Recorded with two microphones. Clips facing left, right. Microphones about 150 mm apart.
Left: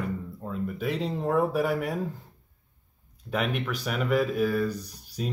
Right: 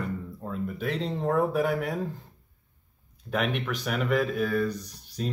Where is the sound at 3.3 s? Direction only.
Centre (ahead or behind).